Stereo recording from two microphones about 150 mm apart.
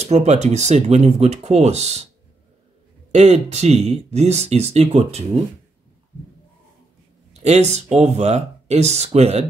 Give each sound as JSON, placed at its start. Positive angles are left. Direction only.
{"t": 0.0, "sound": "speech", "side_deg": -50}
{"t": 3.1, "sound": "speech", "side_deg": -45}
{"t": 7.3, "sound": "speech", "side_deg": -45}